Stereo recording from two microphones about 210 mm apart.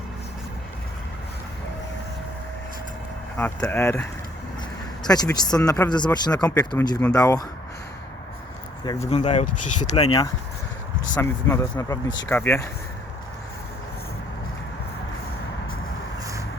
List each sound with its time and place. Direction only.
3.3 s speech: 5° left (ahead or behind)
5.0 s speech: 20° left (ahead or behind)
9.0 s speech: 30° left (ahead or behind)
9.6 s speech: 90° left
9.9 s speech: 25° left (ahead or behind)
11.1 s speech: 15° left (ahead or behind)